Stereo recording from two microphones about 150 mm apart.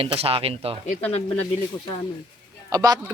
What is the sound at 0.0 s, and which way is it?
Speech, 40° right (ahead or behind).